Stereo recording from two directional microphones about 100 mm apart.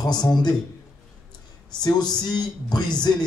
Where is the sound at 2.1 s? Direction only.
45° left (ahead or behind).